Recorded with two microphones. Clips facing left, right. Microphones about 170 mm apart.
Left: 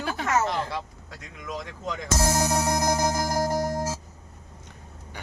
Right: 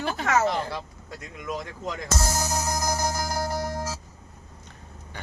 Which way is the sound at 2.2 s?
55° left (ahead or behind).